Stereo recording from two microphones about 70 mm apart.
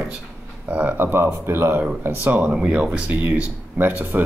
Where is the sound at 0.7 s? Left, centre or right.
Right.